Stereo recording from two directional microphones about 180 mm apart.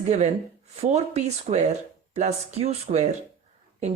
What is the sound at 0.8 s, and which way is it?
Speech, 35° right (ahead or behind).